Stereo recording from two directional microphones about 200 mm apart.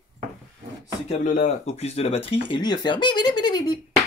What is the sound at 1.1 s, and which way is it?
Speech, 40° left (ahead or behind).